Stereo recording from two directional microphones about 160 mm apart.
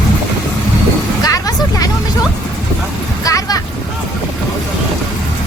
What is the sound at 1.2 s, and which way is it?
Vehicle, 20° left (ahead or behind).